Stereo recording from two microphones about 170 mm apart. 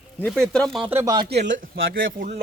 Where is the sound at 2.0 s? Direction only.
50° right (ahead or behind).